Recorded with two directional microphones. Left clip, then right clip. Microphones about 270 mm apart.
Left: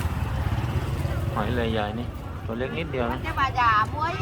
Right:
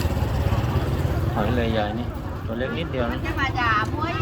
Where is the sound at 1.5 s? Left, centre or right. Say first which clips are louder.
Right 2 dB; centre.